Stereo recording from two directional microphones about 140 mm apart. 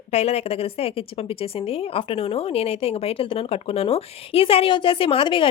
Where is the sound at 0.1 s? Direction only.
50° left (ahead or behind).